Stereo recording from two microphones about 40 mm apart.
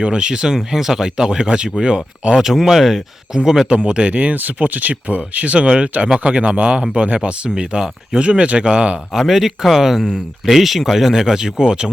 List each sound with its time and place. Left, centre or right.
0.0 s speech: right
4.1 s speech: right
4.4 s speech: right
9.1 s speech: centre